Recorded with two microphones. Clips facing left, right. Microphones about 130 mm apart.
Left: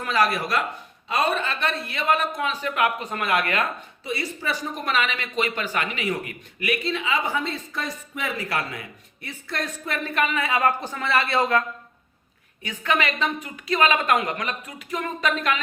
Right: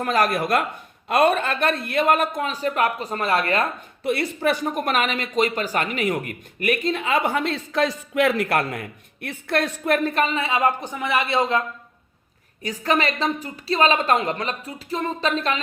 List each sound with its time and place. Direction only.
0.0 s speech: 45° right (ahead or behind)
4.0 s speech: 60° right (ahead or behind)
10.1 s speech: 30° right (ahead or behind)
12.6 s a woman's voice: 35° right (ahead or behind)